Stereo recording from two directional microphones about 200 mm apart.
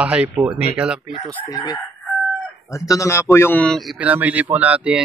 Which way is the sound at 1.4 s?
20° left (ahead or behind).